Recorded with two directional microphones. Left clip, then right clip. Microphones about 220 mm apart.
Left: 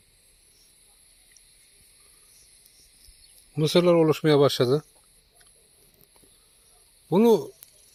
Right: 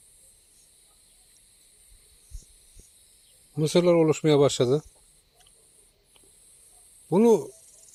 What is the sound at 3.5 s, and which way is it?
Speech, 5° right (ahead or behind).